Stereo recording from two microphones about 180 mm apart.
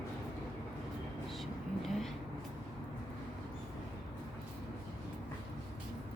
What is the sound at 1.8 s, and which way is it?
Vehicle, centre (ahead or behind).